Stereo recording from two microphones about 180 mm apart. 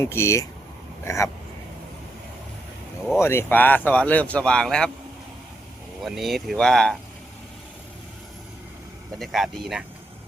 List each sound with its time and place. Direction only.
0.0 s speech: 15° left (ahead or behind)
3.2 s speech: 15° left (ahead or behind)
6.1 s speech: centre (ahead or behind)
9.1 s speech: centre (ahead or behind)